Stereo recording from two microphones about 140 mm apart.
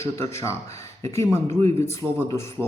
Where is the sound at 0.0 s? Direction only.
20° left (ahead or behind).